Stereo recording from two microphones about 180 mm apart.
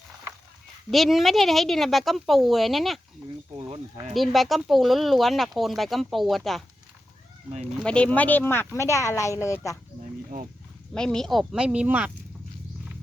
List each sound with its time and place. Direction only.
0.9 s speech: centre (ahead or behind)
4.1 s speech: centre (ahead or behind)
7.8 s speech: 5° left (ahead or behind)
10.9 s speech: 5° left (ahead or behind)